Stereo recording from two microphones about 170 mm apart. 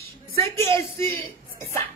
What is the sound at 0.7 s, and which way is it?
Speech, 15° left (ahead or behind).